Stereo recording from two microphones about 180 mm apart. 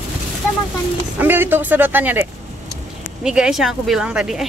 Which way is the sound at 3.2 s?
5° right (ahead or behind).